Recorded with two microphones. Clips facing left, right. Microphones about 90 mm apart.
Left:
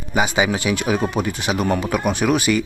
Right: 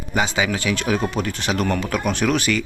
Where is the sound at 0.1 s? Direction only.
15° left (ahead or behind).